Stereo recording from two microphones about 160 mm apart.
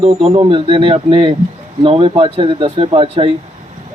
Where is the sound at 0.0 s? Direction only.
35° right (ahead or behind).